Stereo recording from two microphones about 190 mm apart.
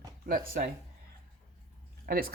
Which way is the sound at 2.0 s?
55° right (ahead or behind).